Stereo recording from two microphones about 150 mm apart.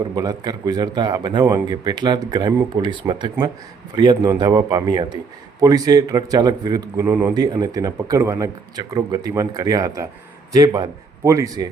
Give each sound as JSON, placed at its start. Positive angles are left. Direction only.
{"t": 0.0, "sound": "a man's voice", "side_deg": -25}